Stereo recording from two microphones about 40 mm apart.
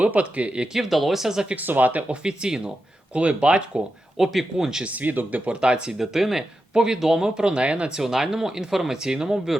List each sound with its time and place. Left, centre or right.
0.0 s speech: right
0.7 s speech: centre
1.5 s speech: right
2.2 s speech: centre
3.1 s speech: right
4.2 s speech: centre
4.9 s speech: right
5.5 s speech: right
6.0 s speech: centre
6.7 s speech: centre
7.9 s speech: centre